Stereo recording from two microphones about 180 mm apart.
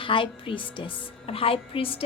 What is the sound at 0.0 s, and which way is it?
A woman's voice, 30° left (ahead or behind).